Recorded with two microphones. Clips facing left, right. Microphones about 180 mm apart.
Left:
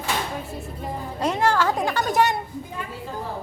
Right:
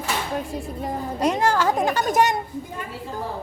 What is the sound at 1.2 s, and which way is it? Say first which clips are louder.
Speech: right 1 dB; 15° right (ahead or behind).